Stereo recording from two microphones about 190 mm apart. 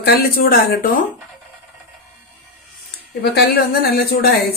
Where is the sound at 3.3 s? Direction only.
55° left (ahead or behind).